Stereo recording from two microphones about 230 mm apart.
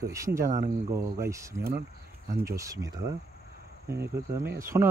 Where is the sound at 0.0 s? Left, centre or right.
Centre.